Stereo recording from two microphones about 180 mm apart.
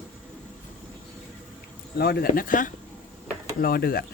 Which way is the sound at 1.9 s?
60° left (ahead or behind).